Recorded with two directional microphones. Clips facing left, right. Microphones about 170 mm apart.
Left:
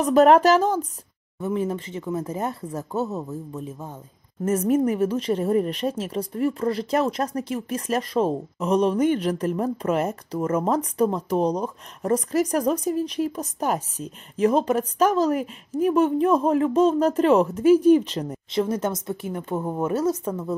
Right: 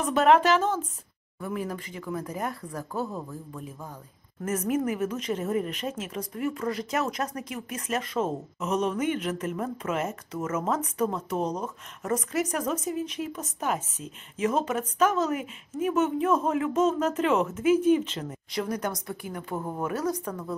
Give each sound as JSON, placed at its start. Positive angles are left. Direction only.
{"t": 0.0, "sound": "speech", "side_deg": 40}
{"t": 1.4, "sound": "speech", "side_deg": 25}
{"t": 18.5, "sound": "speech", "side_deg": 25}